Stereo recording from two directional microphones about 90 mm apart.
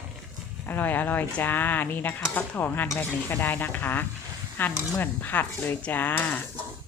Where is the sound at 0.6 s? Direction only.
20° left (ahead or behind).